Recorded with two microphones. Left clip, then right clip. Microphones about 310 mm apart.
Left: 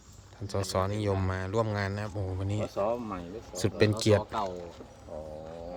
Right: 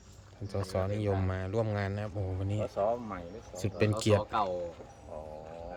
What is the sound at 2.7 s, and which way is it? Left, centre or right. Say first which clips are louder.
Speech: even; left.